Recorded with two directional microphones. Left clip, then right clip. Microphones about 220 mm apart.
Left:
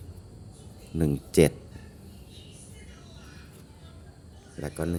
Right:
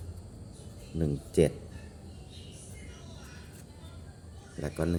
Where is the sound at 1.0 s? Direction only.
25° left (ahead or behind).